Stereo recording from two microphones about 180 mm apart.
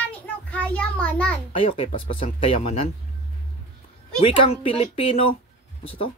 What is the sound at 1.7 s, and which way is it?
Speech, 30° left (ahead or behind).